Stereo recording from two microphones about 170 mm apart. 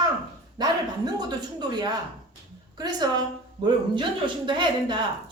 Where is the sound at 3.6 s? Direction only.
30° right (ahead or behind).